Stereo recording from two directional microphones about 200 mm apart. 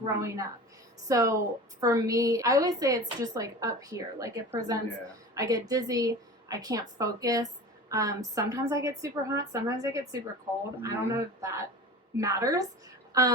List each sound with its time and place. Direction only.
0.0 s a woman's voice: 15° right (ahead or behind)